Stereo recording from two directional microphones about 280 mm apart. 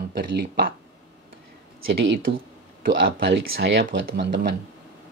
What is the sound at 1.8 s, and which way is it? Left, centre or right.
Speech, right.